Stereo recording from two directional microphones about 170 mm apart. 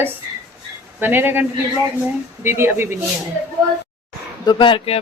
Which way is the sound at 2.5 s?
15° right (ahead or behind).